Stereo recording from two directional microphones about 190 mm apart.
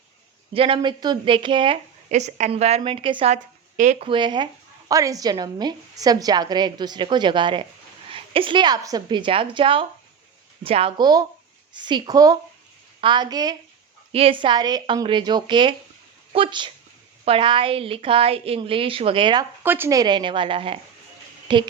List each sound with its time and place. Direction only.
0.5 s speech: 30° right (ahead or behind)
3.3 s speech: 40° right (ahead or behind)
4.1 s speech: 25° right (ahead or behind)
19.6 s speech: 10° right (ahead or behind); by 21.6 s 25° right (ahead or behind)